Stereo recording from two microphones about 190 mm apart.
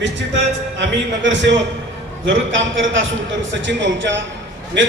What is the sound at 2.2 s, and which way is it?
A man's voice, 80° right.